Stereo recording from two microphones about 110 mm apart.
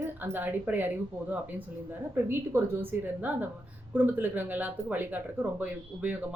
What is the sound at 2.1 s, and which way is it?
A woman's voice, 20° right (ahead or behind).